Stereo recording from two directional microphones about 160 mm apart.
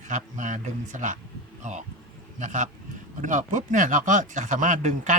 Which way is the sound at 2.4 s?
50° right (ahead or behind).